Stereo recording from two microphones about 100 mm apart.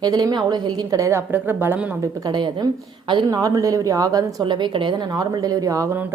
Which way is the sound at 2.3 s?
45° right (ahead or behind).